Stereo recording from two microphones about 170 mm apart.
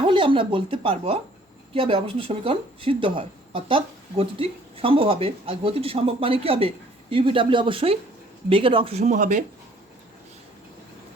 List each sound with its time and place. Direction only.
0.0 s speech: 30° right (ahead or behind); by 9.4 s 50° right (ahead or behind)